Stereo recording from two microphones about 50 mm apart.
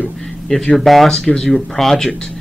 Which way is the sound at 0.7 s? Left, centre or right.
Centre.